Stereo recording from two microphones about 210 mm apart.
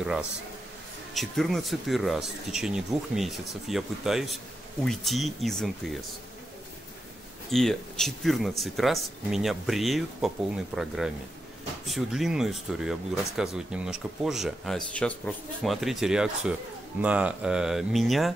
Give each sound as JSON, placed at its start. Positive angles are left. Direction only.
{"t": 1.1, "sound": "speech", "side_deg": 0}
{"t": 7.5, "sound": "speech", "side_deg": 0}